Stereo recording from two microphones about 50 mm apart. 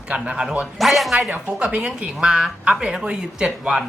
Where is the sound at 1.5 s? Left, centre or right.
Right.